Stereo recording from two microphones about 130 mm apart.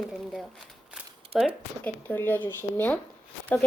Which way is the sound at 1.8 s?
15° left (ahead or behind).